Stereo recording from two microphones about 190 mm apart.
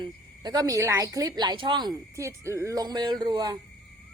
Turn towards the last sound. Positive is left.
turn(degrees=-20)  # may be behind; listen again after turning